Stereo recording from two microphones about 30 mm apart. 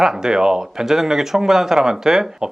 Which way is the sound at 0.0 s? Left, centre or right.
Right.